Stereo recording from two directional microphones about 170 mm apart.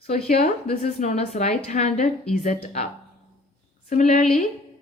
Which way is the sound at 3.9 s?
50° left (ahead or behind).